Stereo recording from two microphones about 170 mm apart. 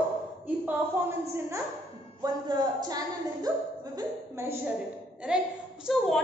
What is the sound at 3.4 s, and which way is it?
Speech, 20° right (ahead or behind).